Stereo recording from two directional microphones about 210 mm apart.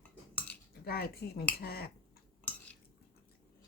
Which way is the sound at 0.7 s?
45° left (ahead or behind).